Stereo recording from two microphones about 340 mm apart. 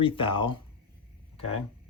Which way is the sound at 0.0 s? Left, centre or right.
Centre.